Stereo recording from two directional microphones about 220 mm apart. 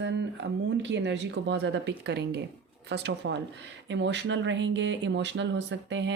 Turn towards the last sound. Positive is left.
turn(degrees=-55)  # may be behind; listen again after turning